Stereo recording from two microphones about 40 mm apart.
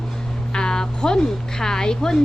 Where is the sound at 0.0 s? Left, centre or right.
Centre.